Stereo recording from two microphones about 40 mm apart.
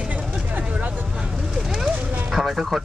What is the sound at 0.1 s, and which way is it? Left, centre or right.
Vehicle, right.